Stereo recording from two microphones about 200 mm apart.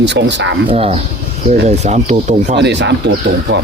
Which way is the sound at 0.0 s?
60° right (ahead or behind).